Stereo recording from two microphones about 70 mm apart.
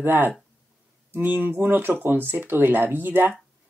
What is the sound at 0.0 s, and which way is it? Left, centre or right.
Speech, right.